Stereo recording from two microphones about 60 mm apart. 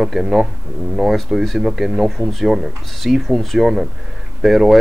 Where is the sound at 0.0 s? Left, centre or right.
Centre.